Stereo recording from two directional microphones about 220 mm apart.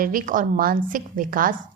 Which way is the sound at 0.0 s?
40° right (ahead or behind).